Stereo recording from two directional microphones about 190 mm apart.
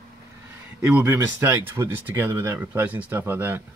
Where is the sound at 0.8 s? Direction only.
10° right (ahead or behind).